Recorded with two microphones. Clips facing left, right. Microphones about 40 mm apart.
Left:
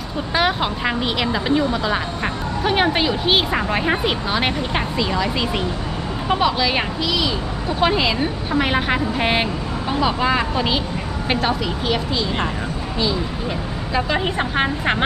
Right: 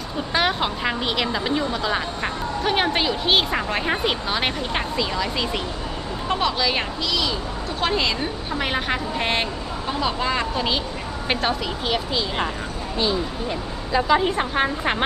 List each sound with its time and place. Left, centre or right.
0.3 s a woman's voice: centre
13.9 s a woman's voice: centre